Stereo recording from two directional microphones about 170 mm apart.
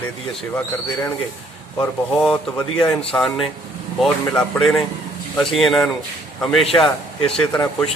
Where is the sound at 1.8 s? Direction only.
10° left (ahead or behind).